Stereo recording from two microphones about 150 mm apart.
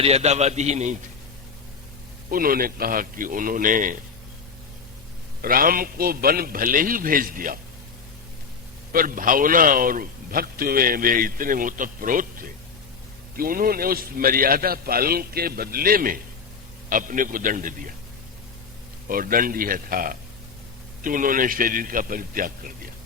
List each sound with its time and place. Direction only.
0.0 s a man's voice: 45° right (ahead or behind)
2.3 s a man's voice: 75° right (ahead or behind)
5.4 s a man's voice: 75° right (ahead or behind)
8.9 s a man's voice: 65° right (ahead or behind)
19.0 s a man's voice: 70° right (ahead or behind)